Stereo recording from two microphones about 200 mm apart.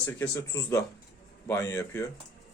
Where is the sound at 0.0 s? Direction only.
15° left (ahead or behind).